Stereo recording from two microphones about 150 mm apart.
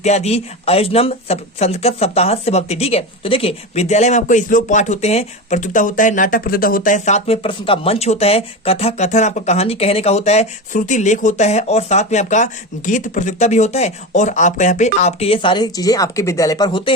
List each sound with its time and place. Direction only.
0.0 s speech: 45° left (ahead or behind); by 16.9 s 30° left (ahead or behind)